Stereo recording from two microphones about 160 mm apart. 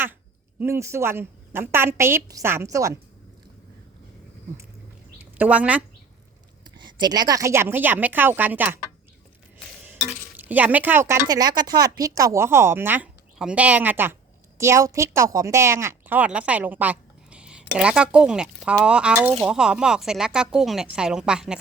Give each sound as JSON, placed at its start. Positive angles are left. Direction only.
{"t": 0.6, "sound": "a woman's voice", "side_deg": -15}
{"t": 5.4, "sound": "a woman's voice", "side_deg": -10}
{"t": 6.7, "sound": "a woman's voice", "side_deg": -30}
{"t": 9.8, "sound": "a woman's voice", "side_deg": -10}